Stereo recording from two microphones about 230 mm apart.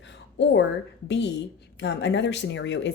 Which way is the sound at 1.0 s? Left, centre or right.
Left.